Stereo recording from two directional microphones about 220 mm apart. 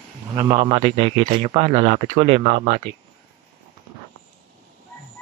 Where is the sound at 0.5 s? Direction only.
25° right (ahead or behind).